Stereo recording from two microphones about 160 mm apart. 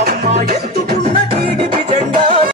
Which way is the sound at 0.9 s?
45° right (ahead or behind).